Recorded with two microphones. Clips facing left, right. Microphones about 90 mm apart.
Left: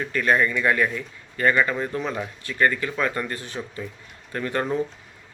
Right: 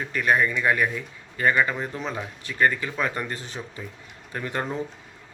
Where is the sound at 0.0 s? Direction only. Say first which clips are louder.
Left 1 dB; 15° right (ahead or behind).